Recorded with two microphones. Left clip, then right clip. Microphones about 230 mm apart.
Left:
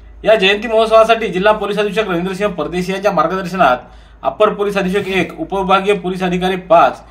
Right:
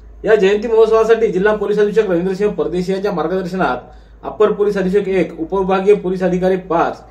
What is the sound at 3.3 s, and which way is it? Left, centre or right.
A man's voice, left.